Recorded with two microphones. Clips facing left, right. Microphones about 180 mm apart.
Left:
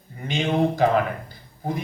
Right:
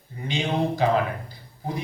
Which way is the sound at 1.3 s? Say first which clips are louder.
Left 3 dB; 50° left (ahead or behind).